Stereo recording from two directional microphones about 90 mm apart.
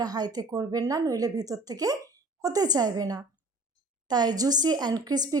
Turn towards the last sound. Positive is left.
turn(degrees=-45)  # may be behind; listen again after turning